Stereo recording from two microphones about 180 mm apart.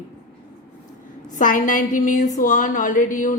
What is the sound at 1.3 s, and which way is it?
A woman's voice, 50° left (ahead or behind).